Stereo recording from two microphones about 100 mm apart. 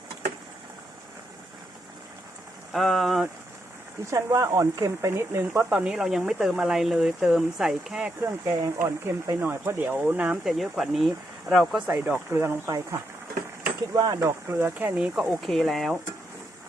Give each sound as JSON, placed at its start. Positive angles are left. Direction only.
{"t": 2.7, "sound": "speech", "side_deg": 0}
{"t": 4.1, "sound": "speech", "side_deg": -30}
{"t": 5.7, "sound": "speech", "side_deg": -10}
{"t": 8.2, "sound": "speech", "side_deg": -30}
{"t": 10.6, "sound": "speech", "side_deg": 0}
{"t": 11.9, "sound": "speech", "side_deg": -15}
{"t": 12.6, "sound": "speech", "side_deg": -35}
{"t": 14.5, "sound": "speech", "side_deg": -20}
{"t": 15.3, "sound": "speech", "side_deg": 0}